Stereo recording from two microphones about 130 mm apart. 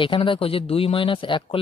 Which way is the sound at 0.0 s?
40° left (ahead or behind).